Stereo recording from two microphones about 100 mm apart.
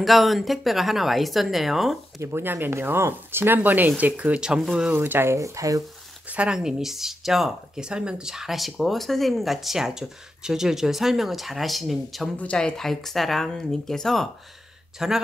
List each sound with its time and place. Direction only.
0.0 s speech: centre (ahead or behind)
2.1 s speech: 25° right (ahead or behind); by 4.9 s 5° right (ahead or behind)
4.9 s speech: 20° right (ahead or behind)
6.2 s speech: 10° right (ahead or behind)
12.4 s speech: 10° left (ahead or behind); by 15.2 s 5° right (ahead or behind)